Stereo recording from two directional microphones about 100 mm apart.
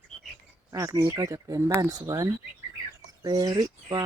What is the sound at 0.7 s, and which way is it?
Speech, 30° right (ahead or behind).